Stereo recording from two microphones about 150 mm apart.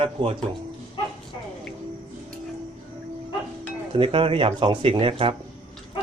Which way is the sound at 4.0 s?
35° right (ahead or behind).